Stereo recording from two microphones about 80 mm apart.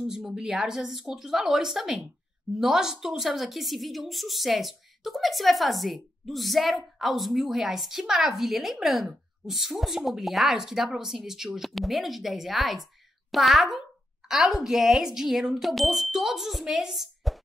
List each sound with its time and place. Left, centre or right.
0.1 s a woman's voice: centre